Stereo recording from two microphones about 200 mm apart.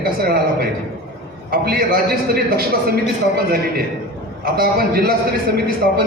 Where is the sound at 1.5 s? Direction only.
50° right (ahead or behind).